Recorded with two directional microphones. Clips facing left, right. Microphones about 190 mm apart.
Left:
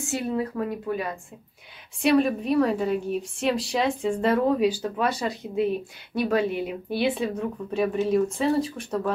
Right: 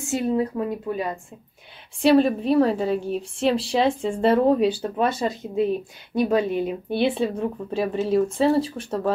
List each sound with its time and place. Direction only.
0.0 s a woman's voice: 20° right (ahead or behind)